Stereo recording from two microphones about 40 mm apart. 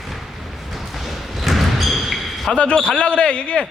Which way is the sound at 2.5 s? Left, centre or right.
Left.